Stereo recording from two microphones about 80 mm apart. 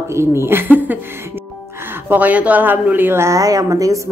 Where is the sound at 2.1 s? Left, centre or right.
Centre; by 4.0 s right.